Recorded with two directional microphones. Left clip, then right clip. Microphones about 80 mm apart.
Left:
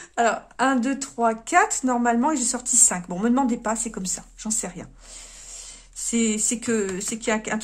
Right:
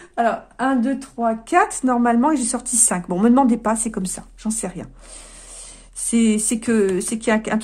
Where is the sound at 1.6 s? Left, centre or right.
Centre; by 4.0 s right.